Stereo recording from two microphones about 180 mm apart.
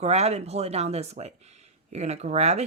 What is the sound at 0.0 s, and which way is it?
Speech, 35° right (ahead or behind).